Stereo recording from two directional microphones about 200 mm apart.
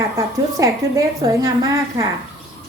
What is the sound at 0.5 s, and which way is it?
A woman's voice, 15° right (ahead or behind).